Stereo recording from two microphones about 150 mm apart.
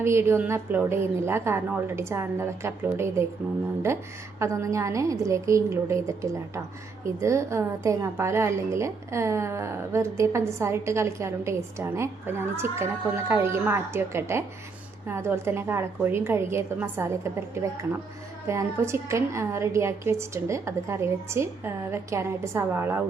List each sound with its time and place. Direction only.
0.0 s a woman's voice: 15° right (ahead or behind)